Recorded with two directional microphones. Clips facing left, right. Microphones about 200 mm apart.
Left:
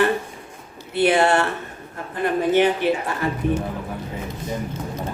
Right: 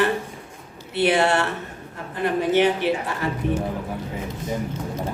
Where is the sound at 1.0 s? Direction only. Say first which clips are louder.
Left 2 dB; 50° left (ahead or behind).